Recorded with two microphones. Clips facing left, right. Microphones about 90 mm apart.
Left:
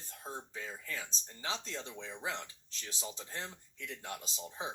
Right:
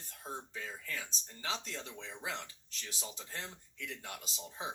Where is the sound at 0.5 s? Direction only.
30° left (ahead or behind).